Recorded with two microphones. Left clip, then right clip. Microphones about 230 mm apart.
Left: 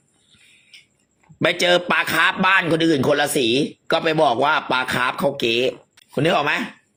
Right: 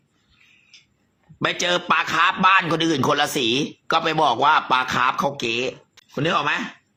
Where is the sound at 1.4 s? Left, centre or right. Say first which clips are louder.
Left 4 dB; centre.